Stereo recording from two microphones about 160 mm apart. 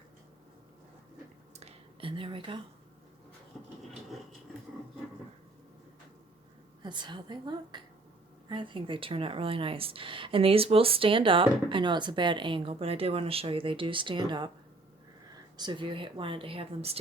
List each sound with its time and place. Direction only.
1.5 s a sound: 35° right (ahead or behind)
6.8 s a woman's voice: 30° right (ahead or behind)
15.5 s speech: 30° right (ahead or behind)